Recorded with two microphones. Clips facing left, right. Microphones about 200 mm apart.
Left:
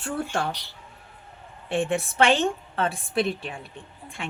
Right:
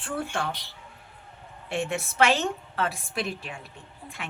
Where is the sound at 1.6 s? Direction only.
30° left (ahead or behind).